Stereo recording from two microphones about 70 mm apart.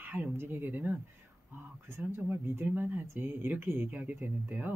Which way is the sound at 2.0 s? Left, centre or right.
Right.